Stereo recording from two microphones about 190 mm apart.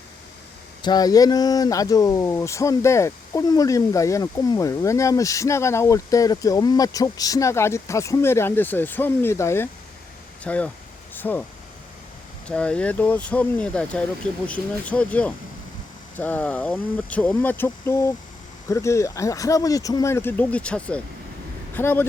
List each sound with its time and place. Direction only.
0.8 s speech: 20° left (ahead or behind)
12.5 s speech: 5° left (ahead or behind)